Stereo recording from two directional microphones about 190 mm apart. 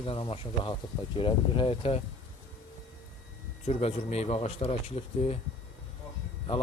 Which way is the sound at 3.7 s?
35° left (ahead or behind).